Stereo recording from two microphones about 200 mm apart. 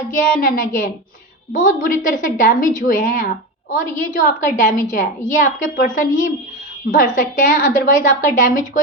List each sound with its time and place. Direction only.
0.1 s a woman's voice: 45° left (ahead or behind)